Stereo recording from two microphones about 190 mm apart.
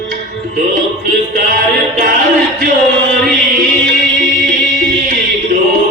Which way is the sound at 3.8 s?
45° right (ahead or behind).